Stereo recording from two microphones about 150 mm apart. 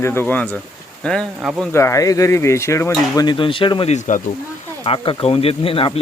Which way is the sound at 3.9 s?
55° left (ahead or behind).